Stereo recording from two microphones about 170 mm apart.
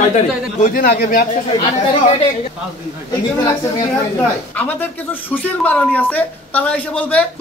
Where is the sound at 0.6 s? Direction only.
55° left (ahead or behind).